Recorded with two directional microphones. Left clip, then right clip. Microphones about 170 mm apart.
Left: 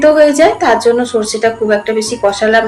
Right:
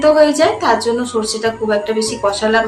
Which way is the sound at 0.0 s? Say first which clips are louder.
Left 4 dB; 15° left (ahead or behind).